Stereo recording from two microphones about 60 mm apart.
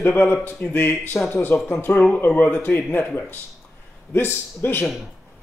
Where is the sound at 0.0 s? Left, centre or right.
Left.